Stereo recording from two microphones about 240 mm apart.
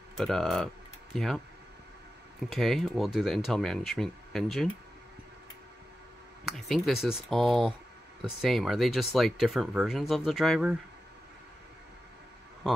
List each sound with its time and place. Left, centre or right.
0.2 s speech: centre
2.5 s speech: centre
6.4 s speech: centre